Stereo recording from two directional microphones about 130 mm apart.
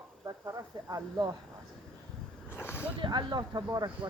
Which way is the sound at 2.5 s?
15° left (ahead or behind).